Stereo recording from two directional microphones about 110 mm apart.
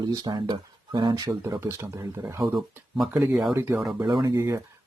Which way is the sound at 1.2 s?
30° right (ahead or behind).